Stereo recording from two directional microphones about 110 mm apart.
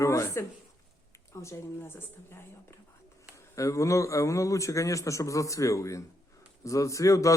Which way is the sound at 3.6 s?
30° left (ahead or behind).